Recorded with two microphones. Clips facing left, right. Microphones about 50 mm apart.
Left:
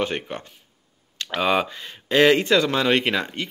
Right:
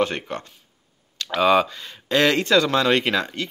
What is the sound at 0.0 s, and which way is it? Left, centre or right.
Speech, centre.